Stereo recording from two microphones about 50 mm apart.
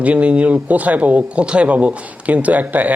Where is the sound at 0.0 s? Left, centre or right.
Right.